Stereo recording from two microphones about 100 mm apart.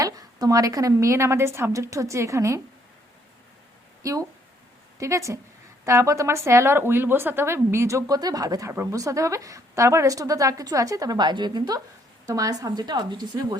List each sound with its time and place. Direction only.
0.0 s a woman's voice: 40° right (ahead or behind)
4.0 s a woman's voice: 35° right (ahead or behind)
8.7 s a woman's voice: 25° right (ahead or behind); by 13.6 s 45° right (ahead or behind)